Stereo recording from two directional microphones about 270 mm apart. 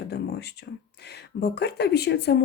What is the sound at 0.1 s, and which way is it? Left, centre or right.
Speech, left.